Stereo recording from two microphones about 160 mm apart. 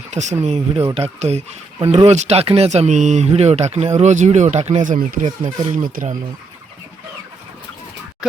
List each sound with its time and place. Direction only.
0.1 s speech: 45° right (ahead or behind)
4.8 s speech: 60° right (ahead or behind)
5.4 s speech: 25° right (ahead or behind)
5.7 s speech: 55° right (ahead or behind)
8.2 s a sound: 5° right (ahead or behind)